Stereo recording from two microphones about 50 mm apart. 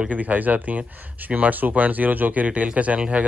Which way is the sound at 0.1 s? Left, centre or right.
Right.